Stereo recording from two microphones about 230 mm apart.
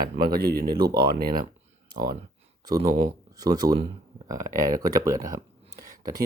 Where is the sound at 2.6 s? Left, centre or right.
Centre.